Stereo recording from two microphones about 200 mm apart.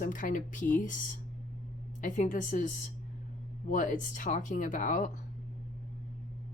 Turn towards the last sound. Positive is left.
turn(degrees=40)  # may be behind; listen again after turning